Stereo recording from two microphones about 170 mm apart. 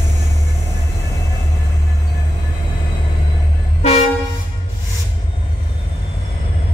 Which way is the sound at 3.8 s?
40° left (ahead or behind).